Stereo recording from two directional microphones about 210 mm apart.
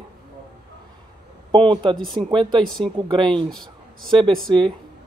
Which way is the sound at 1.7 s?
25° right (ahead or behind).